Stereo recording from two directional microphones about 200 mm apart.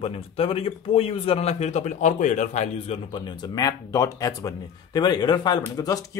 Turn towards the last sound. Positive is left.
turn(degrees=20)  # may be behind; listen again after turning